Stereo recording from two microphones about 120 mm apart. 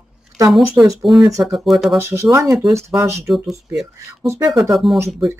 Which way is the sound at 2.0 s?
20° right (ahead or behind).